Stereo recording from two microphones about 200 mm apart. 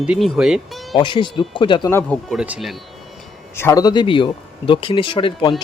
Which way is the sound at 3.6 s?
15° left (ahead or behind).